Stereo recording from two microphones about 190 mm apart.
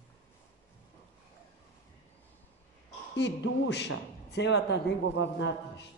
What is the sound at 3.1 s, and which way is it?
A man's voice, 65° left (ahead or behind).